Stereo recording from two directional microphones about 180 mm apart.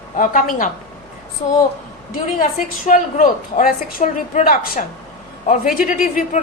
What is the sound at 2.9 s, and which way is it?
A woman's voice, 45° left (ahead or behind).